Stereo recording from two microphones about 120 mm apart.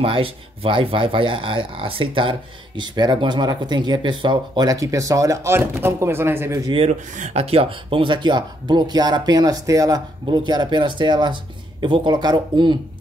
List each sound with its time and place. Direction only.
0.0 s speech: 50° right (ahead or behind); by 6.6 s 20° right (ahead or behind)
6.9 s speech: 80° right; by 12.7 s 40° right (ahead or behind)